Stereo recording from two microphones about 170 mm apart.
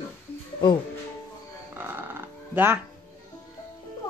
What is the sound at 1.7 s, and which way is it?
Music, 10° right (ahead or behind).